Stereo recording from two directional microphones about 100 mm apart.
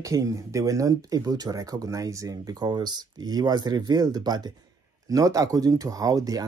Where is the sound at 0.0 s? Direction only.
35° right (ahead or behind).